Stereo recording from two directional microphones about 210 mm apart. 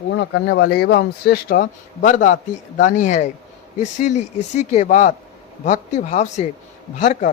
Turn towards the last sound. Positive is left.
turn(degrees=35)  # may be behind; listen again after turning